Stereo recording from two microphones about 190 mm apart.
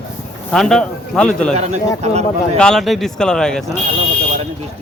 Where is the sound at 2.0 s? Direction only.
35° right (ahead or behind).